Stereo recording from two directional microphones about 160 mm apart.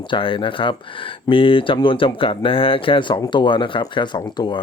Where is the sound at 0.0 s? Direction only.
30° left (ahead or behind).